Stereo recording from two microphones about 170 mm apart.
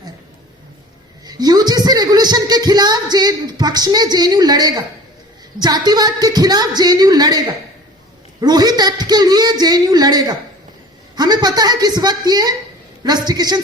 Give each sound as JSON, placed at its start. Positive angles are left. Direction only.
{"t": 1.2, "sound": "speech", "side_deg": -25}